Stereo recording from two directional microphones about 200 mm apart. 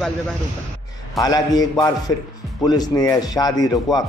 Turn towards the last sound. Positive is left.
turn(degrees=20)  # may be behind; listen again after turning